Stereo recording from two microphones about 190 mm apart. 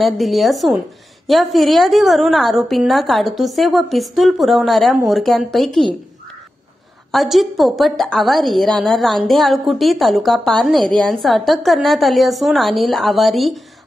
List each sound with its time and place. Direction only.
0.0 s a woman's voice: centre (ahead or behind)
7.1 s a woman's voice: centre (ahead or behind)